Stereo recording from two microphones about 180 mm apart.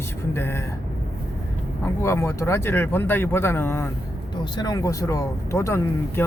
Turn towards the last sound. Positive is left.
turn(degrees=15)  # may be behind; listen again after turning